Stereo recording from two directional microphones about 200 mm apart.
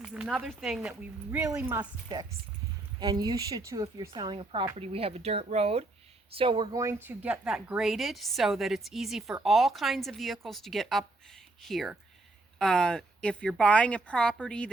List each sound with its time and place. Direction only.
0.0 s speech: 5° right (ahead or behind)
2.1 s speech: 20° right (ahead or behind); by 14.7 s 5° left (ahead or behind)